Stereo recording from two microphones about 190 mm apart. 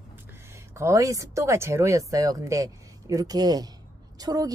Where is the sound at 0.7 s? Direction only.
15° right (ahead or behind).